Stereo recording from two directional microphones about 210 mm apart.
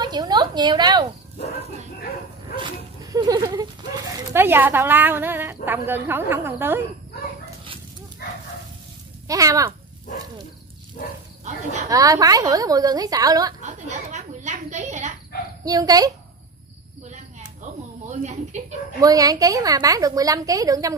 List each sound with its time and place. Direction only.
0.0 s a woman's voice: 20° right (ahead or behind)
2.5 s speech: 20° right (ahead or behind)
4.3 s a woman's voice: 10° right (ahead or behind)
9.3 s a woman's voice: 15° right (ahead or behind)
11.9 s a woman's voice: 15° right (ahead or behind)
13.6 s speech: 35° right (ahead or behind)
15.6 s a woman's voice: 15° right (ahead or behind)
17.1 s a sound: 35° right (ahead or behind)
18.9 s a woman's voice: 15° right (ahead or behind)